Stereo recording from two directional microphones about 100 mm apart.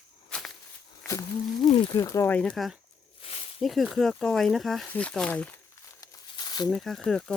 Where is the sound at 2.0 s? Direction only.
30° left (ahead or behind).